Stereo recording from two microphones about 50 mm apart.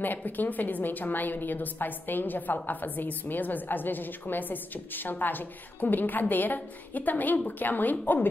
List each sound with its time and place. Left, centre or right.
0.0 s a woman's voice: left